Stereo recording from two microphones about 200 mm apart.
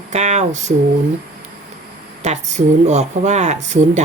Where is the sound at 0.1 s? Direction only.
35° right (ahead or behind).